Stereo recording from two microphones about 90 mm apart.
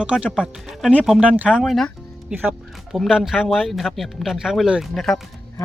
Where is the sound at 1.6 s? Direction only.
5° left (ahead or behind).